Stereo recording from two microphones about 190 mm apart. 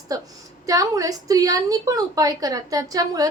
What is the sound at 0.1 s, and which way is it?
A woman's voice, 20° right (ahead or behind).